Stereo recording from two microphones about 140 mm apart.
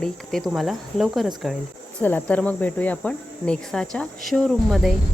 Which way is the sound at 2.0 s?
10° left (ahead or behind).